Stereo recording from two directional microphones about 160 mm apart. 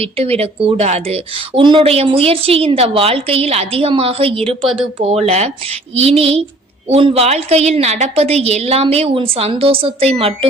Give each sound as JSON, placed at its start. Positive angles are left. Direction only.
{"t": 0.0, "sound": "speech", "side_deg": -40}